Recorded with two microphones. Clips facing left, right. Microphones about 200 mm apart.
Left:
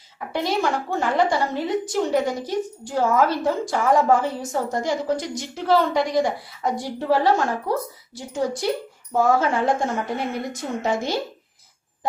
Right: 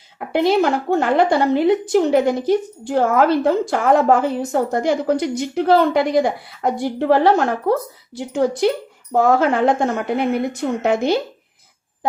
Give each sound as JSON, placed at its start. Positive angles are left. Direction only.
{"t": 0.2, "sound": "a woman's voice", "side_deg": -65}